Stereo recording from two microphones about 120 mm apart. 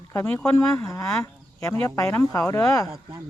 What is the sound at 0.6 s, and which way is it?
Speech, 25° left (ahead or behind).